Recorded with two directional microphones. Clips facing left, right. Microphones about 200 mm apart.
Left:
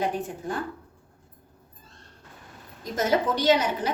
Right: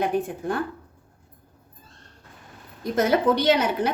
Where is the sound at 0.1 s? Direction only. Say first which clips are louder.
Right 7 dB; 55° right (ahead or behind).